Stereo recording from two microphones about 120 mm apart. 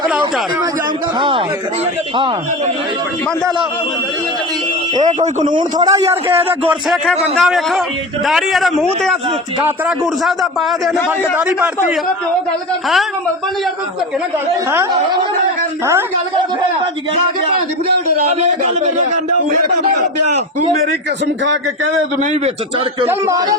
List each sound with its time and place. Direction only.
5.0 s a man's voice: 75° right (ahead or behind)
5.8 s a man's voice: 25° right (ahead or behind)
7.3 s a man's voice: centre (ahead or behind)
10.0 s a man's voice: centre (ahead or behind)
11.2 s a man's voice: 10° right (ahead or behind)
18.4 s a man's voice: 75° right (ahead or behind)
22.2 s speech: 90° right
23.0 s a man's voice: 25° right (ahead or behind)